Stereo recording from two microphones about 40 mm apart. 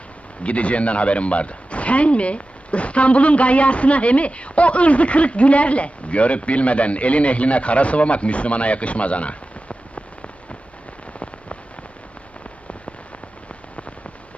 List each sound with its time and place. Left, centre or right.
0.4 s speech: left